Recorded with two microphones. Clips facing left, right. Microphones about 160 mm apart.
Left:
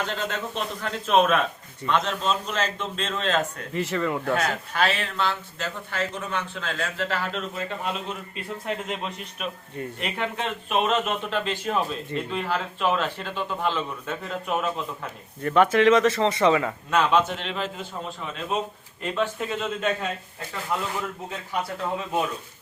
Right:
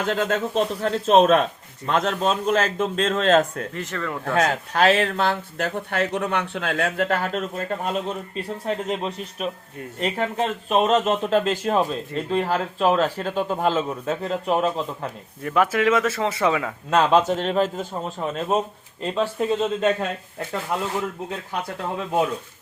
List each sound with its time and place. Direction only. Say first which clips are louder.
0.0 s speech: right 6 dB; 50° right (ahead or behind)
0.6 s speech: right 8 dB; 35° right (ahead or behind)
1.9 s speech: right 3 dB; 50° right (ahead or behind)
3.8 s speech: left 6 dB; 5° left (ahead or behind)
4.4 s speech: right 6 dB; 40° right (ahead or behind)
15.4 s speech: left 2 dB; 5° right (ahead or behind)
16.9 s speech: right 4 dB; 40° right (ahead or behind)